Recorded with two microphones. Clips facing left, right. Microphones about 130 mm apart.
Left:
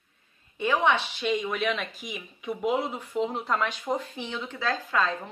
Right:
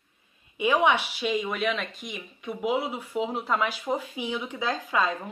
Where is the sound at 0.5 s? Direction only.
10° right (ahead or behind).